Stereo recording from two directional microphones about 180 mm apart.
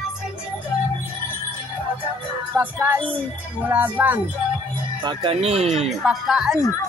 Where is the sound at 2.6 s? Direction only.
10° right (ahead or behind).